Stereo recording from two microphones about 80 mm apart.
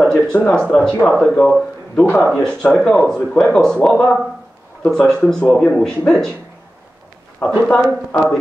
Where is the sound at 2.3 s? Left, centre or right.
Centre.